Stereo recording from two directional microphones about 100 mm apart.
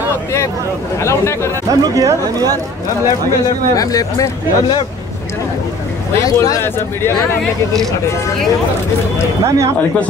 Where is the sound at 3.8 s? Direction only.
35° left (ahead or behind).